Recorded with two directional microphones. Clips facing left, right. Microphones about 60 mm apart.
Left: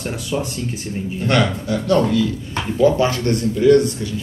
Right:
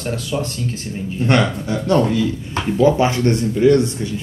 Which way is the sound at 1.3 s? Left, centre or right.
Right.